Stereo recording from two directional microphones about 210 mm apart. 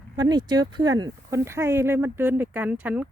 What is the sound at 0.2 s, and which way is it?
Speech, 20° right (ahead or behind).